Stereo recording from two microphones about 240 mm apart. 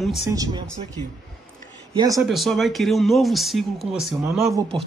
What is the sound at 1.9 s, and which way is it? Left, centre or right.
Speech, centre.